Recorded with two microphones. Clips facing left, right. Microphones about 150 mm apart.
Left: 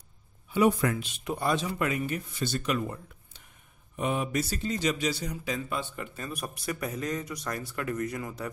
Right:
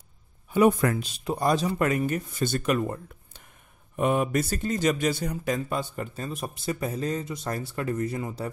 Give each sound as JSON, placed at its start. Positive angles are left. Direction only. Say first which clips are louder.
{"t": 0.5, "sound": "speech", "louder": "right 3 dB", "side_deg": -50}